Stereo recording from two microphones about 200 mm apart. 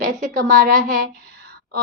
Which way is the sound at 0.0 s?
45° right (ahead or behind).